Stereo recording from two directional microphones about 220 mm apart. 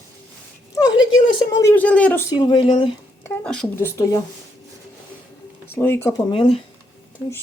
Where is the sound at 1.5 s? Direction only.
10° left (ahead or behind).